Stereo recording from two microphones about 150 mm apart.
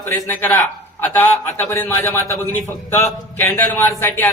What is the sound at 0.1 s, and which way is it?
A man's voice, 10° left (ahead or behind).